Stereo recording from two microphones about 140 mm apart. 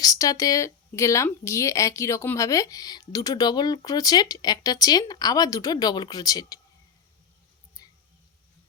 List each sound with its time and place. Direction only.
0.0 s speech: 25° left (ahead or behind)
7.8 s mouse: 25° left (ahead or behind)